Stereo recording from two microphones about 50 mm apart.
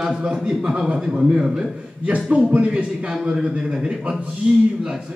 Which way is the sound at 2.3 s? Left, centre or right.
Right.